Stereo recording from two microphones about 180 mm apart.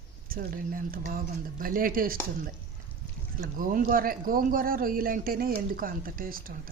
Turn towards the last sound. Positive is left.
turn(degrees=-50)  # may be behind; listen again after turning